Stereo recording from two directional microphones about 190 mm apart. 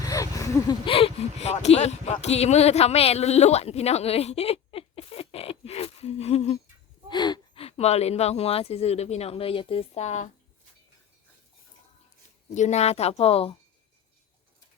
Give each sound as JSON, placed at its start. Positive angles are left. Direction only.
{"t": 0.0, "sound": "a sound", "side_deg": 15}
{"t": 0.9, "sound": "speech", "side_deg": 30}
{"t": 7.1, "sound": "speech", "side_deg": 20}
{"t": 12.5, "sound": "a woman's voice", "side_deg": 35}